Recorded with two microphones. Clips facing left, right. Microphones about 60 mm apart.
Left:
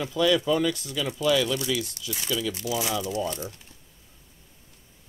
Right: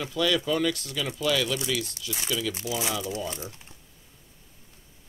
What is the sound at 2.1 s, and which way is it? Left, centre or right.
Speech, centre.